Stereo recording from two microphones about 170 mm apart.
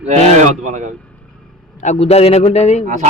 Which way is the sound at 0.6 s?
45° right (ahead or behind).